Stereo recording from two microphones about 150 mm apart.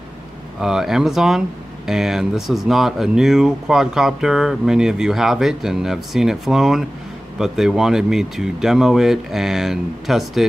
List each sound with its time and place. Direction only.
0.6 s speech: 5° right (ahead or behind)